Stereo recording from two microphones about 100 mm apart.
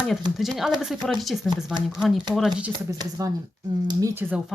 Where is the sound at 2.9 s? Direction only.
30° right (ahead or behind).